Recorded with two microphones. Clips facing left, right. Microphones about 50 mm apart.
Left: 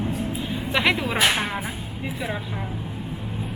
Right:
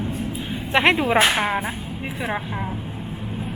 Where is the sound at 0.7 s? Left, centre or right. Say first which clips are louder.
Right 5 dB; right.